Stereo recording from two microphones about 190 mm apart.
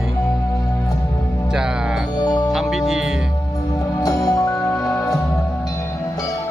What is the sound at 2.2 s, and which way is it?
Music, 20° left (ahead or behind).